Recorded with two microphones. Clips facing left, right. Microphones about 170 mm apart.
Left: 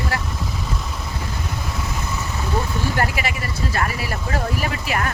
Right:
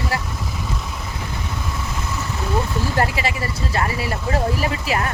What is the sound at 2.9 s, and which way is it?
Speech, 25° right (ahead or behind).